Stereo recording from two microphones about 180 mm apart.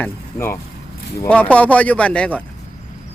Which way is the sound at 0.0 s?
15° left (ahead or behind).